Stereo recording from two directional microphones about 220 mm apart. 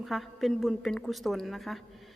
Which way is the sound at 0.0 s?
Centre (ahead or behind).